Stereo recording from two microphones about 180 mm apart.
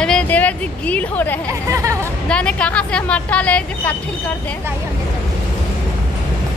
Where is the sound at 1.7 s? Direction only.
15° right (ahead or behind).